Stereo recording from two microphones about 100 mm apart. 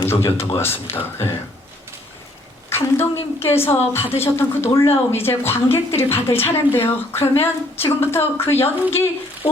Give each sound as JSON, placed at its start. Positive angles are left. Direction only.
{"t": 0.0, "sound": "a woman's voice", "side_deg": 25}
{"t": 2.6, "sound": "a woman's voice", "side_deg": 25}